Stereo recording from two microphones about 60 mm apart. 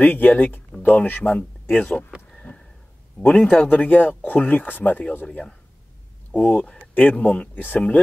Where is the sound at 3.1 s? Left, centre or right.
Centre.